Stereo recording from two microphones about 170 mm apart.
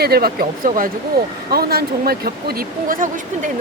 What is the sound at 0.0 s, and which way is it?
Speech, 65° right (ahead or behind).